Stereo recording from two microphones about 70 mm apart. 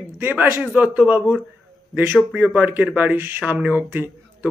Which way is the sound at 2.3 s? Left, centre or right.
Centre.